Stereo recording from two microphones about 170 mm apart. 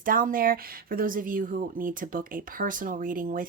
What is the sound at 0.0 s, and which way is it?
Speech, 55° right (ahead or behind).